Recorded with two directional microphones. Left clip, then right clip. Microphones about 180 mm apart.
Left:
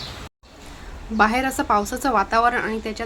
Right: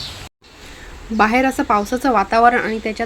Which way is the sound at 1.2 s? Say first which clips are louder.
Right 4 dB; 15° right (ahead or behind).